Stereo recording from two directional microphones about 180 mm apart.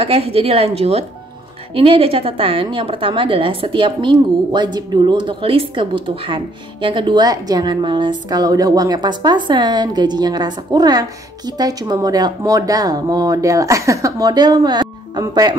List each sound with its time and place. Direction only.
0.0 s a woman's voice: 30° right (ahead or behind)